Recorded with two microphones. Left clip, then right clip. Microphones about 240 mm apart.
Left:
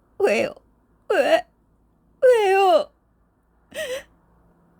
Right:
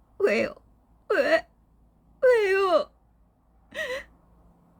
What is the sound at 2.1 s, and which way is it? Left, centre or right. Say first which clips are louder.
Wail: left 5 dB; left.